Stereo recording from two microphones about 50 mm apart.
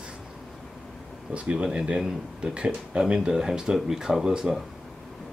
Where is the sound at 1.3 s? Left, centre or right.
Right.